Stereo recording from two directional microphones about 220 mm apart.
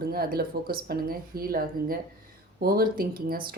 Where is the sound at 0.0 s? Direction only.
45° right (ahead or behind).